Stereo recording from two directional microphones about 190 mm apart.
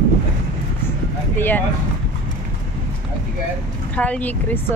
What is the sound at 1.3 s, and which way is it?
Speech, 10° left (ahead or behind).